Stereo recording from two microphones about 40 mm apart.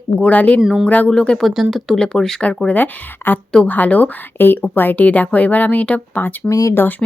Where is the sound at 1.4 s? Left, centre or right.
Centre.